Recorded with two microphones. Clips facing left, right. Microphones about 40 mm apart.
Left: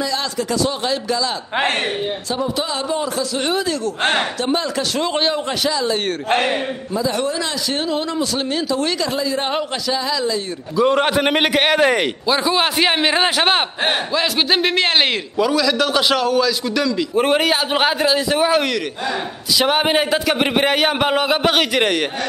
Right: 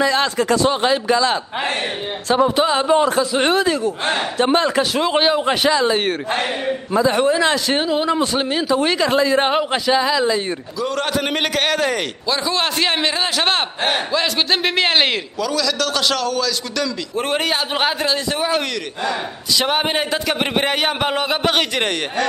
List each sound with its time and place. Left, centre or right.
0.0 s a man's voice: right
2.5 s a man's voice: right
4.9 s speech: centre
5.6 s a man's voice: right
7.1 s speech: right
9.1 s speech: right
9.8 s speech: right
10.8 s a man's voice: left; by 15.0 s centre
15.3 s a man's voice: centre